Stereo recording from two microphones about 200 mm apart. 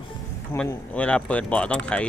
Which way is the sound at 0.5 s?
5° left (ahead or behind).